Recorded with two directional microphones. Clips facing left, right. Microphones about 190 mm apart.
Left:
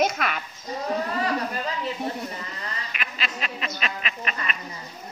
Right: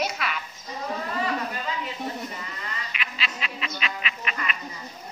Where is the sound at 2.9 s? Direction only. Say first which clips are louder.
Left 2 dB; 45° left (ahead or behind).